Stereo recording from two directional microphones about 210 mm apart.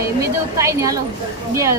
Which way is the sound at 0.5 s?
15° right (ahead or behind).